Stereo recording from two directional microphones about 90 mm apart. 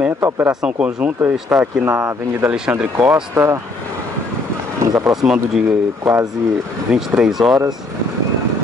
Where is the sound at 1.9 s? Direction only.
30° right (ahead or behind).